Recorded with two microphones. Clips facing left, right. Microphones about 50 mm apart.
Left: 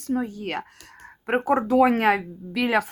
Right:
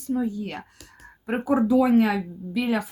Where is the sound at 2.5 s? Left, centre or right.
Left.